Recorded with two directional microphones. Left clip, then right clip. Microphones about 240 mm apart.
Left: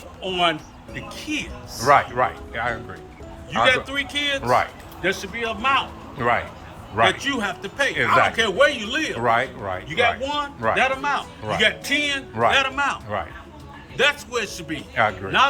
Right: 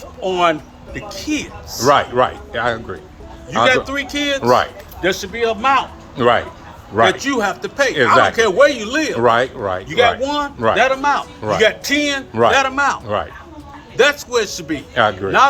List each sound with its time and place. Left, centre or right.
0.2 s a man's voice: right